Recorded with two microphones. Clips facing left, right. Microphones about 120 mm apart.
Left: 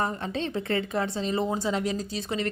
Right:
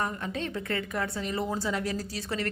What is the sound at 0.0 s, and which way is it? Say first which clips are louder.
A woman's voice: left 3 dB; 30° left (ahead or behind).